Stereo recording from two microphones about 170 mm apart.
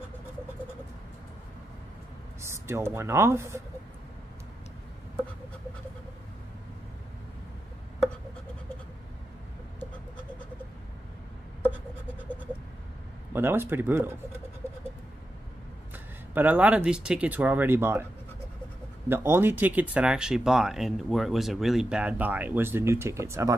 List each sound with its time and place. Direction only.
2.4 s speech: 15° right (ahead or behind)
13.3 s speech: 15° right (ahead or behind)
15.9 s speech: 10° right (ahead or behind)
19.0 s speech: 15° right (ahead or behind)